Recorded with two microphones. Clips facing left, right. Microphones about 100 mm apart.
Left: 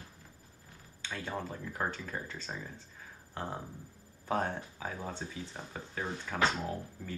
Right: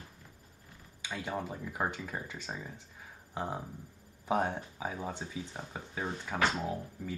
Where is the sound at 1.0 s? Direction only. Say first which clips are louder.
Right 2 dB; 15° right (ahead or behind).